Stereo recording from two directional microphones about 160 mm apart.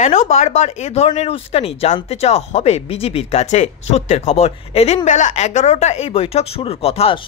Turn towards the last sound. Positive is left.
turn(degrees=35)  # may be behind; listen again after turning